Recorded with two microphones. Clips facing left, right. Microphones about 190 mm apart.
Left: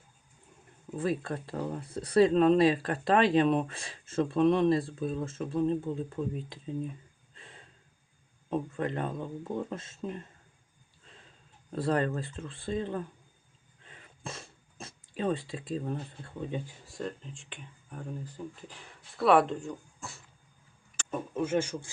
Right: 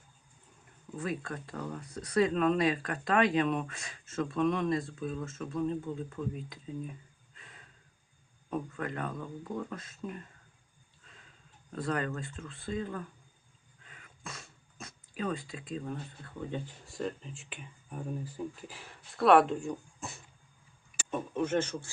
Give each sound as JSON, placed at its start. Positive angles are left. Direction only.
{"t": 0.9, "sound": "speech", "side_deg": 30}
{"t": 7.3, "sound": "a sound", "side_deg": 30}
{"t": 8.4, "sound": "speech", "side_deg": 25}
{"t": 11.7, "sound": "speech", "side_deg": 30}
{"t": 13.8, "sound": "dog", "side_deg": 30}
{"t": 16.4, "sound": "speech", "side_deg": 15}
{"t": 16.8, "sound": "speech", "side_deg": 0}
{"t": 19.5, "sound": "speech", "side_deg": -15}
{"t": 21.1, "sound": "speech", "side_deg": 10}